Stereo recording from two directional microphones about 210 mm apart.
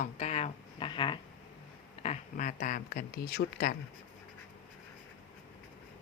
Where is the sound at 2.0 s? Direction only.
35° left (ahead or behind).